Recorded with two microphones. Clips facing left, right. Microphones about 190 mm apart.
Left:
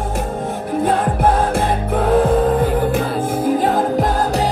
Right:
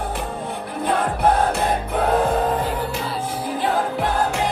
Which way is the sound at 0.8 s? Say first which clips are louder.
Left 3 dB; 50° left (ahead or behind).